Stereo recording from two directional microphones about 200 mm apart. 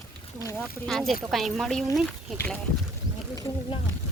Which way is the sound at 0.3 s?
15° left (ahead or behind).